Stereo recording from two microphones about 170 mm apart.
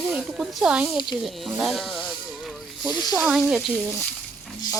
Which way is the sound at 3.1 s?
5° right (ahead or behind).